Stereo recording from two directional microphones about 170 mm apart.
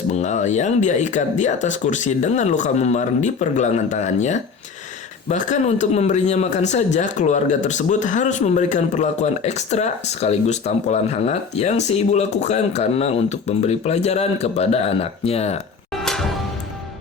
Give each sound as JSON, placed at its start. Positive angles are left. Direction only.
{"t": 0.2, "sound": "speech", "side_deg": 45}